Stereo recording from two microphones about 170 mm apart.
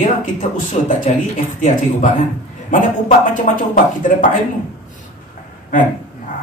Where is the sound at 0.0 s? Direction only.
50° left (ahead or behind).